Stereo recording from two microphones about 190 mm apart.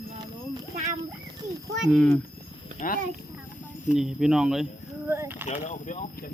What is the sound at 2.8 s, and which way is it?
Speech, 45° left (ahead or behind).